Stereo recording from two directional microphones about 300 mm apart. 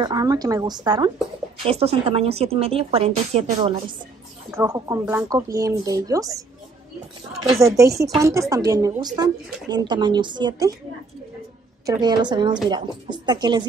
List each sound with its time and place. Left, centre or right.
0.0 s a woman's voice: centre
7.4 s speech: centre
11.8 s speech: centre